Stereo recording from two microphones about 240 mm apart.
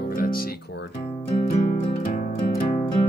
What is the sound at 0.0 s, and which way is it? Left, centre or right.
Guitar, left.